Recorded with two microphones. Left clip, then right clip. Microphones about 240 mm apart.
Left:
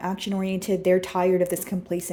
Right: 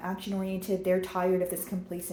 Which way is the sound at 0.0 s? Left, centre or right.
Left.